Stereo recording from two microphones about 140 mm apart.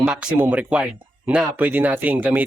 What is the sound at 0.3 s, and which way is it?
Speech, 15° right (ahead or behind).